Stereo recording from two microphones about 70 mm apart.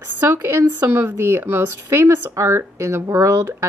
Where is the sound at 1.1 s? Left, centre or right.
Right.